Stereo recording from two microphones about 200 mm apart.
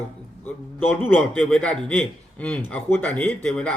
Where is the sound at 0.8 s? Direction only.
10° left (ahead or behind).